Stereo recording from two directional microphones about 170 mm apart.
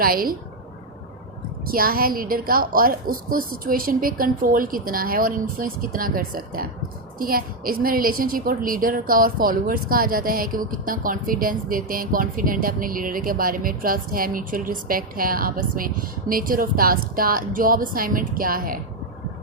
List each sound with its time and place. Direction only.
0.0 s a woman's voice: 60° right (ahead or behind)
1.6 s a woman's voice: 60° right (ahead or behind)